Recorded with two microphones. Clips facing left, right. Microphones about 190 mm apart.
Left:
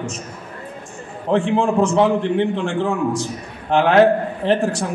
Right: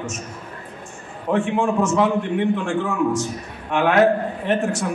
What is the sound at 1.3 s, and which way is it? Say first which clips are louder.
A man's voice: left 3 dB; 30° left (ahead or behind).